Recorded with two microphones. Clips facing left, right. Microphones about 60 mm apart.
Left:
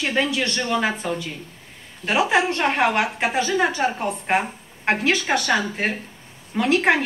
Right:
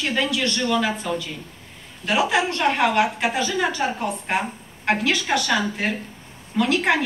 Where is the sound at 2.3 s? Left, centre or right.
Left.